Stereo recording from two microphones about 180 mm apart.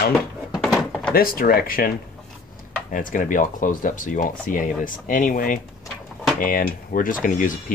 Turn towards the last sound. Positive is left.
turn(degrees=45)  # may be behind; listen again after turning